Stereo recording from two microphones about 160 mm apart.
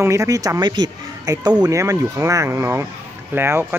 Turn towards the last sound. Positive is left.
turn(degrees=-15)  # may be behind; listen again after turning